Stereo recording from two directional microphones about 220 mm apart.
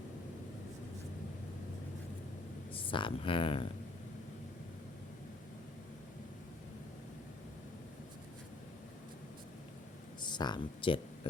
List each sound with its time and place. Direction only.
2.7 s speech: 25° left (ahead or behind)
10.2 s speech: 20° left (ahead or behind)